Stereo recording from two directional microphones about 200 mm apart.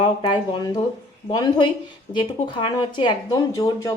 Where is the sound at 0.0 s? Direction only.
25° left (ahead or behind).